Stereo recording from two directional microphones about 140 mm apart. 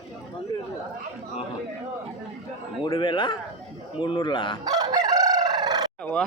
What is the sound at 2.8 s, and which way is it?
A man's voice, 35° left (ahead or behind).